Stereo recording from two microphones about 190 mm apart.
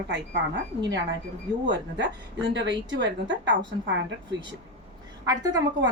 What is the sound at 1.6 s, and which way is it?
A woman's voice, 70° right (ahead or behind).